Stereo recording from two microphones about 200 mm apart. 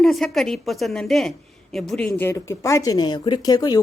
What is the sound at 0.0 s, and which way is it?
A woman's voice, centre (ahead or behind).